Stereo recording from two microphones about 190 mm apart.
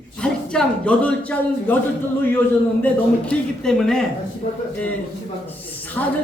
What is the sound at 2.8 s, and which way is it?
Mantra, 5° left (ahead or behind).